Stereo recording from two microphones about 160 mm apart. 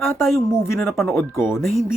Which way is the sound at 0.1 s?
Centre (ahead or behind).